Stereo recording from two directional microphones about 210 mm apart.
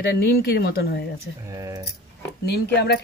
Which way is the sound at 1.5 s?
15° right (ahead or behind).